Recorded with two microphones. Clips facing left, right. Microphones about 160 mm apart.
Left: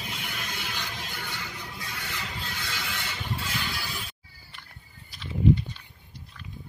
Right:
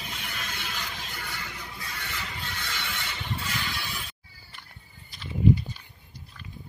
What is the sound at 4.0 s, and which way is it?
Music, centre (ahead or behind).